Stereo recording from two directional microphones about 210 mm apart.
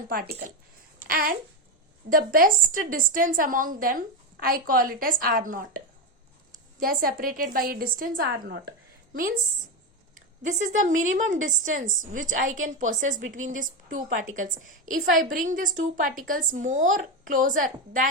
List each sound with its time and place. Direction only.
0.1 s a woman's voice: 45° right (ahead or behind)
10.4 s a woman's voice: 35° right (ahead or behind)